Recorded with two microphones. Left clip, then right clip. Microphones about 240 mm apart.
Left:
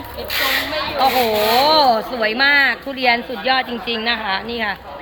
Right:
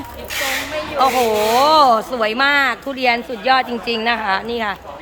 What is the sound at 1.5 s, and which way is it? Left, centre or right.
Speech, centre.